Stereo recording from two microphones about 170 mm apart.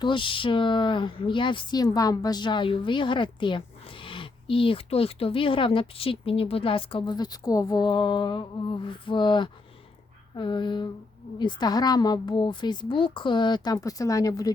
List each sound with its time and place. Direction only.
0.0 s speech: 30° left (ahead or behind)